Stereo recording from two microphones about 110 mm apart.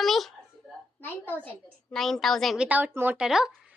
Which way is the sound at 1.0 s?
20° left (ahead or behind).